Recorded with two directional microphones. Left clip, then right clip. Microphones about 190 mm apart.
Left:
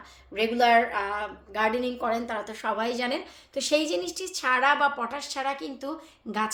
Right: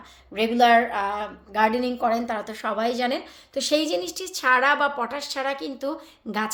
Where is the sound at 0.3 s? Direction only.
20° right (ahead or behind).